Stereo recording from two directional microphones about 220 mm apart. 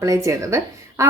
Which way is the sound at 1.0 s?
15° right (ahead or behind).